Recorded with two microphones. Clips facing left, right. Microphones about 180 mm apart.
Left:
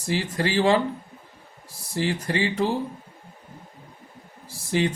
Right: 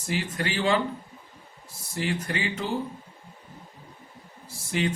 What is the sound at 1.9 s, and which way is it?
Speech, 30° left (ahead or behind).